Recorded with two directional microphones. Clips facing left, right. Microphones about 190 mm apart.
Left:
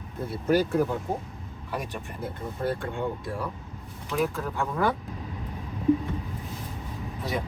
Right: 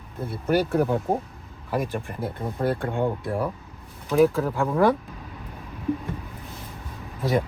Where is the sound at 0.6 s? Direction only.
65° right (ahead or behind).